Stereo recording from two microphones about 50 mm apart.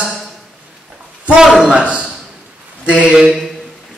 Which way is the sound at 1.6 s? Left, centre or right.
Right.